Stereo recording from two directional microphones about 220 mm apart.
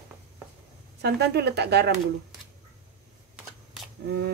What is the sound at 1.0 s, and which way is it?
Speech, 50° right (ahead or behind).